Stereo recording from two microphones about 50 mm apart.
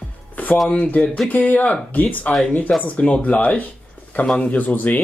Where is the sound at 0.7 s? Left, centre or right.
Left.